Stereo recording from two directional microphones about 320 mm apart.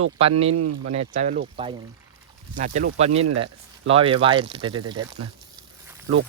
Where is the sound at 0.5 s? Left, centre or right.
Right.